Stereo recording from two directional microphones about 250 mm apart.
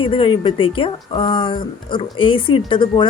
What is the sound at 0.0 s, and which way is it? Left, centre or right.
A woman's voice, centre.